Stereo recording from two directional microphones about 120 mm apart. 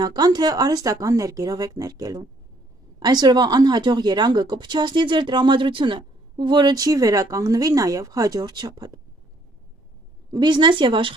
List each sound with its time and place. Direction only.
0.0 s a woman's voice: 35° right (ahead or behind)
10.3 s a woman's voice: 40° right (ahead or behind)